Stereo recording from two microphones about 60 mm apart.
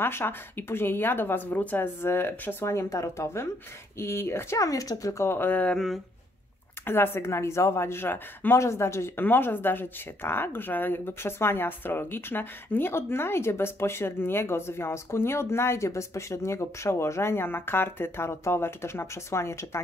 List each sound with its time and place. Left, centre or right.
0.0 s speech: left
2.0 s speech: left
2.7 s speech: left
4.0 s speech: left
4.6 s speech: left
5.3 s speech: left
6.9 s speech: left
8.5 s speech: left
9.2 s speech: left